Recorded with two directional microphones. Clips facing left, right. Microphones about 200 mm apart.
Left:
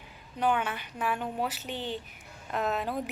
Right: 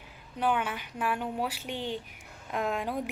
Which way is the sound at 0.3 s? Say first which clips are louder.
Left 1 dB; 5° right (ahead or behind).